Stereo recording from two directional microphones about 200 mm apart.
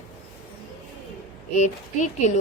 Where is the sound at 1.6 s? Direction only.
35° left (ahead or behind).